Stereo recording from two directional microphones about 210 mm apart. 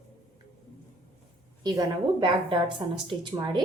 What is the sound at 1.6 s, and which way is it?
Speech, 20° right (ahead or behind).